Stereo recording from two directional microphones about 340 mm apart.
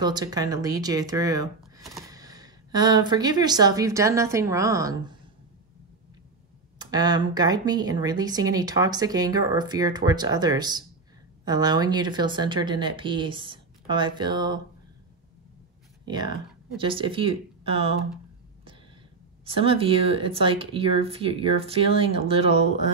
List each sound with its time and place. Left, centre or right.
0.0 s speech: centre
6.8 s speech: centre
16.1 s speech: centre
19.4 s speech: centre